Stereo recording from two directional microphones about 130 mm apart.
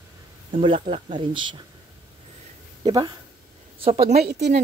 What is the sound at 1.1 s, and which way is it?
Speech, 40° right (ahead or behind).